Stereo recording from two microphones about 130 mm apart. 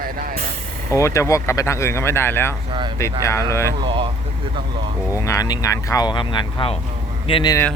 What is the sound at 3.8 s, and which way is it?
Speech, 40° right (ahead or behind).